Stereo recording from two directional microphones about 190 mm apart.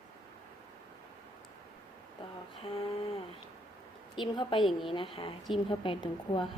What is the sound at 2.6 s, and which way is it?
Mantra, 30° left (ahead or behind).